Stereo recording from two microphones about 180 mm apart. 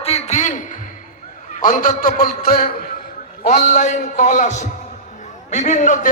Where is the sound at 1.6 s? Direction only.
45° left (ahead or behind).